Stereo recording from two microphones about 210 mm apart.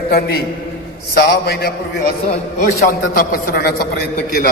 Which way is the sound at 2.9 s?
45° left (ahead or behind).